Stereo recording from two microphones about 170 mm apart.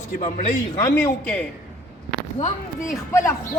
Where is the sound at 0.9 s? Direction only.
15° left (ahead or behind).